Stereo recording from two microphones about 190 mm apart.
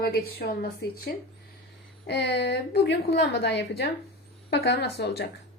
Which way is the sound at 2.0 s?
65° left (ahead or behind).